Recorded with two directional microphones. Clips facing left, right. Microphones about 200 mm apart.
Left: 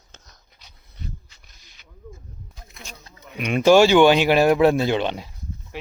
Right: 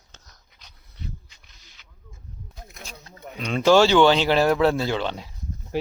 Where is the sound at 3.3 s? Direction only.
15° left (ahead or behind).